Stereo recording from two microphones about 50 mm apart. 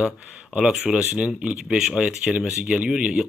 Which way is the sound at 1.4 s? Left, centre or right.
Centre.